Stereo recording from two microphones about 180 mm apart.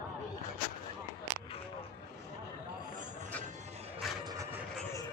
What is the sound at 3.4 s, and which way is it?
Music, 40° right (ahead or behind).